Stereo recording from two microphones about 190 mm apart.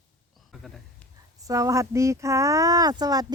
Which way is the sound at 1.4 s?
15° right (ahead or behind).